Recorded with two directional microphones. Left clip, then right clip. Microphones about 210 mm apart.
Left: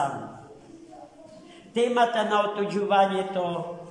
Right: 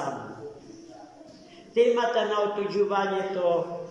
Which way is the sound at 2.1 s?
15° left (ahead or behind).